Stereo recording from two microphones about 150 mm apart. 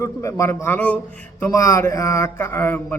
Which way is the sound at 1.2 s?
20° left (ahead or behind).